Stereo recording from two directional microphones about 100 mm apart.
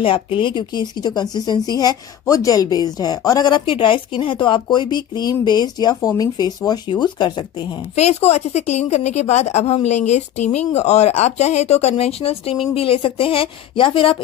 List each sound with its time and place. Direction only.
0.0 s speech: 60° left (ahead or behind); by 5.9 s 45° left (ahead or behind)
5.9 s speech: 35° left (ahead or behind)
7.9 s a woman's voice: 90° left; by 14.1 s 60° left (ahead or behind)